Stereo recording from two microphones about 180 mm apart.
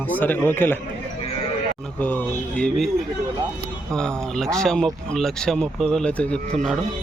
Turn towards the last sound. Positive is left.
turn(degrees=0)  # may be behind; listen again after turning